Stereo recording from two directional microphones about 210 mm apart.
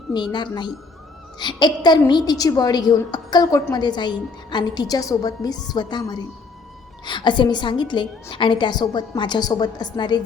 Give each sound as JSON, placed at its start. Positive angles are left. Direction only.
{"t": 0.1, "sound": "a woman's voice", "side_deg": 20}